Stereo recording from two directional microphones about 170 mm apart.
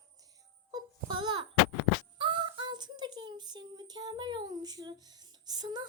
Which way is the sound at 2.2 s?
30° right (ahead or behind).